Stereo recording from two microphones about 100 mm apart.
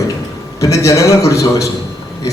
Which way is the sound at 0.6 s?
30° left (ahead or behind).